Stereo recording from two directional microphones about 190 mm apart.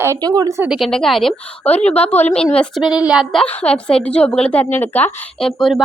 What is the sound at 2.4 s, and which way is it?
A woman's voice, 5° left (ahead or behind).